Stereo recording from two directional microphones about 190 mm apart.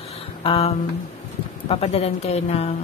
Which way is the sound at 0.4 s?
30° left (ahead or behind).